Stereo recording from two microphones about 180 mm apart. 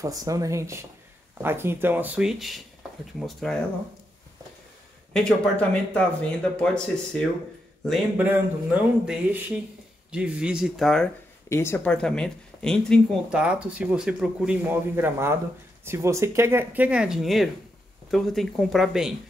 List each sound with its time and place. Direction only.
0.0 s speech: 20° right (ahead or behind); by 3.5 s centre (ahead or behind)
5.1 s speech: 5° left (ahead or behind)
8.2 s speech: 10° right (ahead or behind)
11.4 s speech: 15° left (ahead or behind); by 19.1 s centre (ahead or behind)